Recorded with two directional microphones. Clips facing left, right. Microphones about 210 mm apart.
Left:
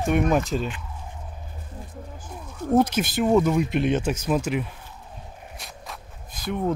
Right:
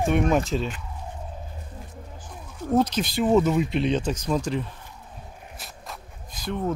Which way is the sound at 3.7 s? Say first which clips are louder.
Left 1 dB; 55° left (ahead or behind).